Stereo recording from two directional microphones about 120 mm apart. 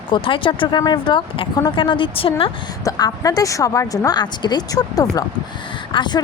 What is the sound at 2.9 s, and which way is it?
A woman's voice, 30° left (ahead or behind).